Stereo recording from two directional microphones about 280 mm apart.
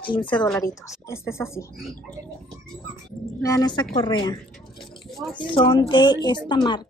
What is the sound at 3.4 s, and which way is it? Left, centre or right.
Speech, centre.